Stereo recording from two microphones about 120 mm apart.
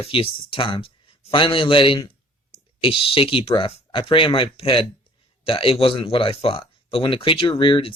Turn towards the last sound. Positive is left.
turn(degrees=45)  # may be behind; listen again after turning